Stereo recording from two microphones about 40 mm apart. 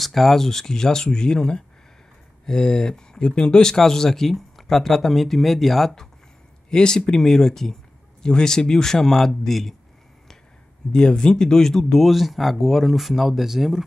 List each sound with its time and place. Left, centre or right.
0.0 s a man's voice: centre; by 3.7 s left
3.7 s speech: centre
6.7 s a man's voice: centre
10.9 s a man's voice: left
11.9 s speech: centre